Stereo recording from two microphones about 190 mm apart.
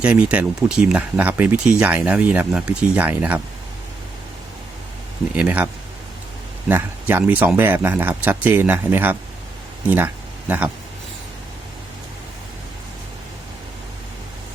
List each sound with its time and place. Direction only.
0.0 s speech: 5° right (ahead or behind)
5.3 s speech: 5° right (ahead or behind)
6.7 s speech: 10° right (ahead or behind)